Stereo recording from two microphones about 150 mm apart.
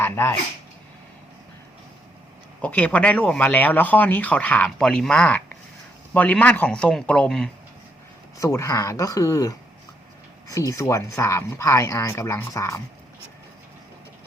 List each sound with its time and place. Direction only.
0.0 s speech: 15° left (ahead or behind)
2.6 s speech: 10° left (ahead or behind)
8.4 s speech: 20° left (ahead or behind)